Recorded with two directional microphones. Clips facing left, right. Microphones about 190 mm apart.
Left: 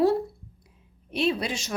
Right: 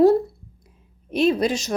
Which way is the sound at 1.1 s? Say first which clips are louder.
Right 7 dB; 45° right (ahead or behind).